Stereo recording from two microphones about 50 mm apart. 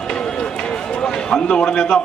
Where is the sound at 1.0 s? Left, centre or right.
Centre.